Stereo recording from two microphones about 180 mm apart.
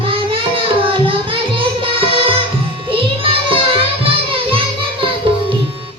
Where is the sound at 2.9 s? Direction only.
30° right (ahead or behind).